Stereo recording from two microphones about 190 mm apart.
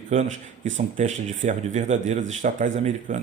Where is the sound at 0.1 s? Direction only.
40° right (ahead or behind).